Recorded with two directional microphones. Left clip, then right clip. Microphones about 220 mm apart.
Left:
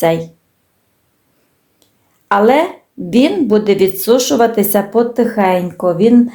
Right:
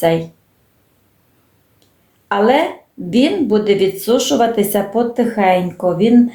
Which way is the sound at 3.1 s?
30° left (ahead or behind).